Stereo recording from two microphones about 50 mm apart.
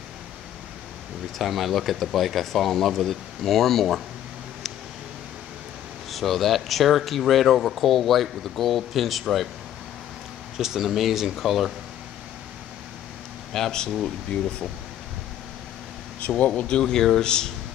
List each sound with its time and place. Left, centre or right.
1.4 s speech: centre
6.1 s speech: centre
10.6 s speech: centre
13.5 s speech: centre
14.3 s speech: left
16.2 s speech: left